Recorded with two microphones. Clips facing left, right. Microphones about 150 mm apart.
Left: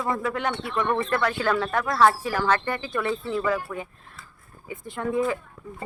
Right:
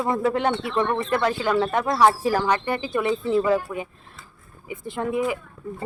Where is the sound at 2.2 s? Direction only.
30° right (ahead or behind).